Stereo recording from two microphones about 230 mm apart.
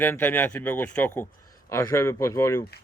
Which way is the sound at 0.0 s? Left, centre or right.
Centre.